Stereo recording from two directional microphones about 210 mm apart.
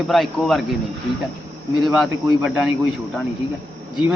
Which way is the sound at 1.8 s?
Centre (ahead or behind).